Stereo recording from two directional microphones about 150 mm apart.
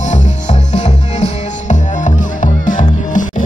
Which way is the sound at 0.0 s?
50° left (ahead or behind).